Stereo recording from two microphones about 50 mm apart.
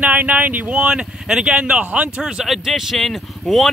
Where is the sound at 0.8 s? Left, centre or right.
Centre.